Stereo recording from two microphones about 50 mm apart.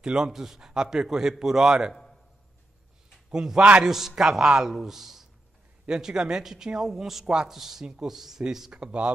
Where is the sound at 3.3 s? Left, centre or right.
Centre.